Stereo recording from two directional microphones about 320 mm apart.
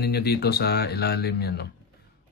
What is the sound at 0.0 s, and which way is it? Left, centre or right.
Speech, left.